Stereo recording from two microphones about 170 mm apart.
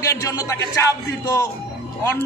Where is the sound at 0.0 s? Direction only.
20° left (ahead or behind).